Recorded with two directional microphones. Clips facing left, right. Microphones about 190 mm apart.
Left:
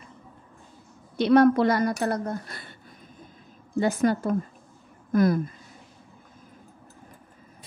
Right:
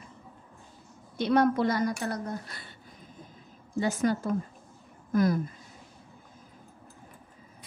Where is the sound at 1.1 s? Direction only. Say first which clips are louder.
Left 6 dB; 75° left (ahead or behind).